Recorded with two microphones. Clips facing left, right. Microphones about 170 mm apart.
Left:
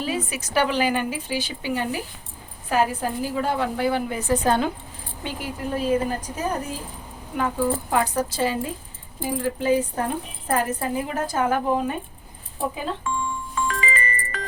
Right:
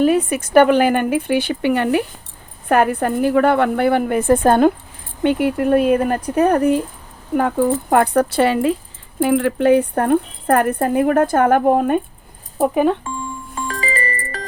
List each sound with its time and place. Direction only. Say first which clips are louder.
0.0 s speech: right 12 dB; 55° right (ahead or behind)
5.2 s speech: right 14 dB; 65° right (ahead or behind)
13.6 s music: right 2 dB; 35° right (ahead or behind)